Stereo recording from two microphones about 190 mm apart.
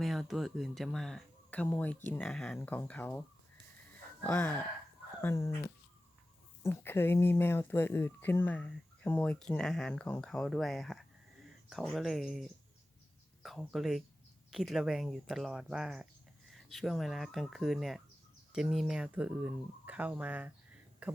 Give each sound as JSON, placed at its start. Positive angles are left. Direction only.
{"t": 0.0, "sound": "speech", "side_deg": 0}